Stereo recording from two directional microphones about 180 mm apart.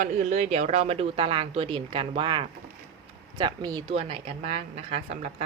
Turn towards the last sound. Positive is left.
turn(degrees=-35)  # may be behind; listen again after turning